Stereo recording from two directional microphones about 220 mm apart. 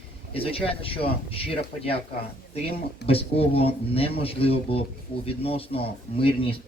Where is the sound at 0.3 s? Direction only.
25° left (ahead or behind).